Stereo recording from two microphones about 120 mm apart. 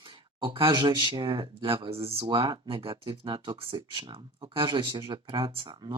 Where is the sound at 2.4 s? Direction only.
35° right (ahead or behind).